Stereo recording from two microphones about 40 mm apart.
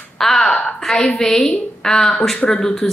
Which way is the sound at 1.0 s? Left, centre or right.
Centre.